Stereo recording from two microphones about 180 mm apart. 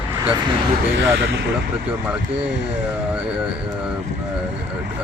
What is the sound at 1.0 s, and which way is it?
Speech, 80° right.